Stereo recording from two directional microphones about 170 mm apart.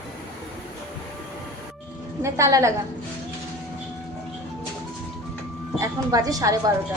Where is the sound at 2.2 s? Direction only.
15° right (ahead or behind).